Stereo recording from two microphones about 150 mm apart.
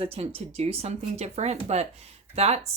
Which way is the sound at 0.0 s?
40° right (ahead or behind).